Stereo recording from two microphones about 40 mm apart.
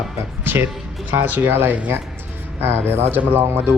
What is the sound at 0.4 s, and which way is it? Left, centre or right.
Music, right.